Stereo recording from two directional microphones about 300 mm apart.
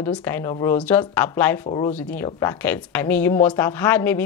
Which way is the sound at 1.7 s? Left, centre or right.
Centre.